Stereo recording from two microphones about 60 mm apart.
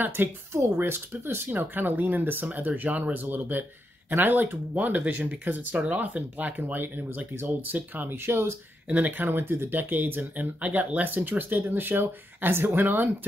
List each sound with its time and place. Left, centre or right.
0.0 s speech: right
0.5 s speech: right
8.8 s speech: right